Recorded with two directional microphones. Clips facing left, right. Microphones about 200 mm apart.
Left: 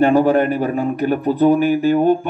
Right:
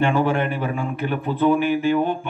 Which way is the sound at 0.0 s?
40° left (ahead or behind).